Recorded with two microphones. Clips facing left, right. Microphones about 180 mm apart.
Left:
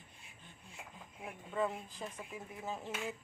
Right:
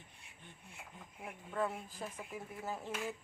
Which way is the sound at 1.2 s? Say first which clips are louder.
Left 1 dB; centre (ahead or behind).